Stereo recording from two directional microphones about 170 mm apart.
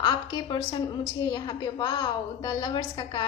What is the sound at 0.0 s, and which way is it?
A woman's voice, 25° left (ahead or behind).